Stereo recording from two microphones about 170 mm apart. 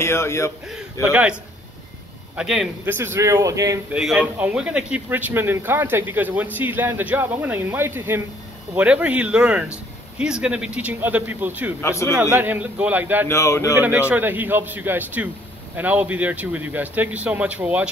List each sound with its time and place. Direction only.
0.0 s speech: 15° left (ahead or behind)
1.1 s a man's voice: 5° right (ahead or behind)
3.9 s a man's voice: 5° right (ahead or behind)
11.8 s speech: 15° left (ahead or behind)
12.2 s a man's voice: 10° right (ahead or behind)
13.3 s speech: 15° left (ahead or behind)
13.7 s a man's voice: 10° right (ahead or behind)